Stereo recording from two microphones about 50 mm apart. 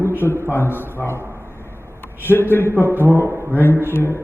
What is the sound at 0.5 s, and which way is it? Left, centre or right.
Speech, left.